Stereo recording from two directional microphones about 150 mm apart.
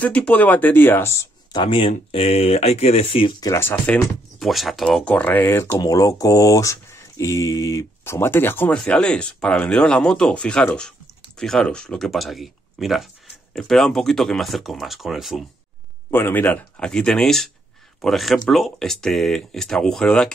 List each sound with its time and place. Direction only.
0.0 s speech: 10° left (ahead or behind)
1.5 s speech: 30° left (ahead or behind); by 5.7 s 15° left (ahead or behind)
5.7 s speech: 25° left (ahead or behind); by 15.4 s centre (ahead or behind)
16.1 s speech: 15° left (ahead or behind)